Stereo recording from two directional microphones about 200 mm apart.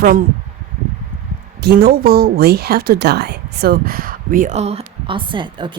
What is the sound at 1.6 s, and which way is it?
A woman's voice, 50° right (ahead or behind).